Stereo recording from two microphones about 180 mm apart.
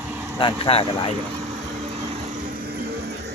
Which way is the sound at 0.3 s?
30° left (ahead or behind).